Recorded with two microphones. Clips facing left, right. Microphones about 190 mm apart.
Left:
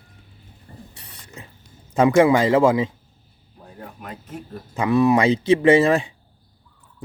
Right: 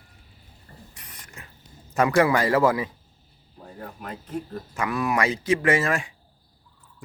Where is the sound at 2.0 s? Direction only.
20° left (ahead or behind).